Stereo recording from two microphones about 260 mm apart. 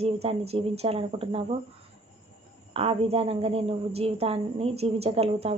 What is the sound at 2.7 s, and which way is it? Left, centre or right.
Speech, right.